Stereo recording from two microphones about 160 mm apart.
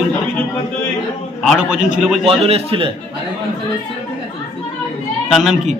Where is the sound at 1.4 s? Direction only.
Centre (ahead or behind).